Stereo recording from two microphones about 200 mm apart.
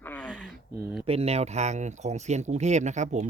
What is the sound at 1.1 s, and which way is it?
Speech, 30° right (ahead or behind).